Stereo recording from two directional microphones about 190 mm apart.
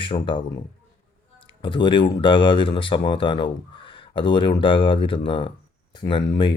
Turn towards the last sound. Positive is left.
turn(degrees=25)  # may be behind; listen again after turning